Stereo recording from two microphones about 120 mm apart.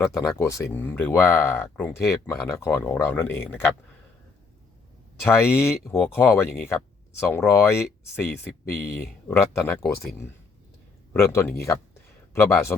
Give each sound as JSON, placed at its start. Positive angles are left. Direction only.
{"t": 0.1, "sound": "speech", "side_deg": 25}
{"t": 5.2, "sound": "speech", "side_deg": 20}
{"t": 11.1, "sound": "speech", "side_deg": 20}